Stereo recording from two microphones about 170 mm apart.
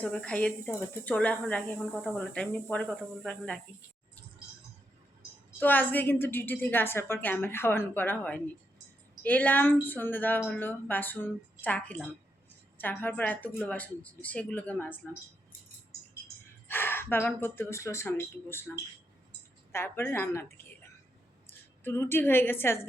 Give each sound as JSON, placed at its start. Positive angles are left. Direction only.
{"t": 0.0, "sound": "a woman's voice", "side_deg": 5}
{"t": 5.5, "sound": "a woman's voice", "side_deg": 10}
{"t": 16.6, "sound": "a woman's voice", "side_deg": 10}
{"t": 19.7, "sound": "a woman's voice", "side_deg": 15}
{"t": 21.8, "sound": "a woman's voice", "side_deg": 15}